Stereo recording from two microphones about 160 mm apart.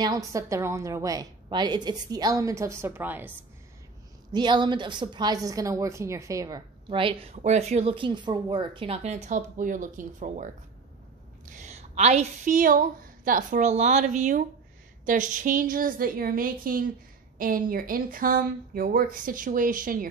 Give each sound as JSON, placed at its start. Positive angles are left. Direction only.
{"t": 0.0, "sound": "a woman's voice", "side_deg": -20}
{"t": 4.3, "sound": "a woman's voice", "side_deg": -25}